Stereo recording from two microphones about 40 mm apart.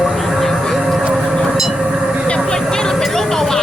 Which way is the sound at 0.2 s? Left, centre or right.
Centre.